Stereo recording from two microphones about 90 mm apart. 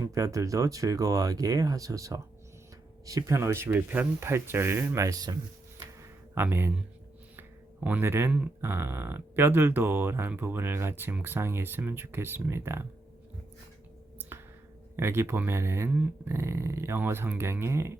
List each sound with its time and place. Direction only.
0.0 s speech: 40° right (ahead or behind)
5.7 s a sound: 35° right (ahead or behind)
6.4 s speech: 25° right (ahead or behind)
7.8 s speech: 20° right (ahead or behind)
14.9 s speech: 30° right (ahead or behind)
15.9 s speech: 15° right (ahead or behind)
16.3 s speech: 30° right (ahead or behind)